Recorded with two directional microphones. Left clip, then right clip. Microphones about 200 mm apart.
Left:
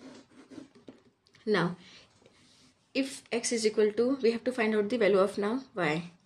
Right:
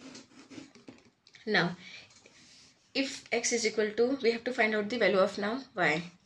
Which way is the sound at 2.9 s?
60° left (ahead or behind).